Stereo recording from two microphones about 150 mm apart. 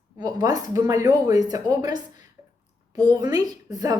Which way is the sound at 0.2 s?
25° right (ahead or behind).